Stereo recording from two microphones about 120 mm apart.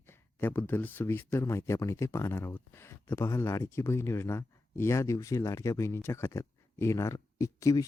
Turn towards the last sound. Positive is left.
turn(degrees=30)  # may be behind; listen again after turning